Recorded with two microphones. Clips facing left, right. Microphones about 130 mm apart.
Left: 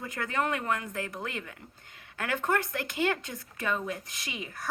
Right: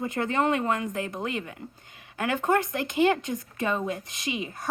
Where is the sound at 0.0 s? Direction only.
25° right (ahead or behind).